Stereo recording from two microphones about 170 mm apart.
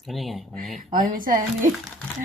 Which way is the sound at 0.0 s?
Centre (ahead or behind).